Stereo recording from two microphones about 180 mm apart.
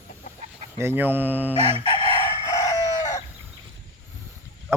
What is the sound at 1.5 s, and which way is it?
Speech, 35° right (ahead or behind).